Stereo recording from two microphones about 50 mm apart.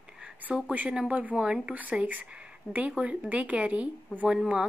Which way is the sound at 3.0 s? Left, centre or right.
Right.